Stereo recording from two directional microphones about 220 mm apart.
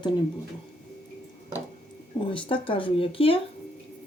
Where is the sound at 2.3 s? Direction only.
25° left (ahead or behind).